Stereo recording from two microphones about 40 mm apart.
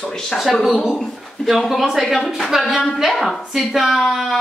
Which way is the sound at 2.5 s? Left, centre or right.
Centre.